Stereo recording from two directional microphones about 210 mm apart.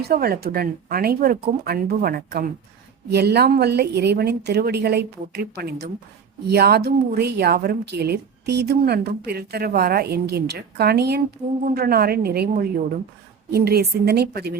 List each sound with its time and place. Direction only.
0.0 s a woman's voice: 45° right (ahead or behind)